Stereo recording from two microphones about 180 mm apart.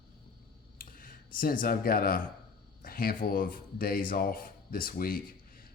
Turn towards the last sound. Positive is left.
turn(degrees=55)  # may be behind; listen again after turning